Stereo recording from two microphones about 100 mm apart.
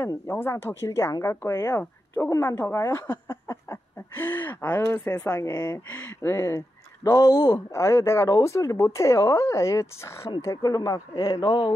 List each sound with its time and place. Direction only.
0.4 s a woman's voice: 20° left (ahead or behind)
0.8 s a woman's voice: 35° left (ahead or behind)
7.7 s speech: 30° left (ahead or behind)
10.4 s speech: 40° left (ahead or behind)